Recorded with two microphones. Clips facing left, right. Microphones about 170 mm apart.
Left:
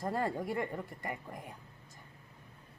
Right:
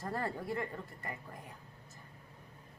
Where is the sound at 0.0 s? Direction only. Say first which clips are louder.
Left 4 dB; 15° left (ahead or behind).